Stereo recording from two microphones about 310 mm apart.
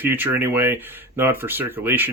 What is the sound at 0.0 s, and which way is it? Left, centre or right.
Speech, centre.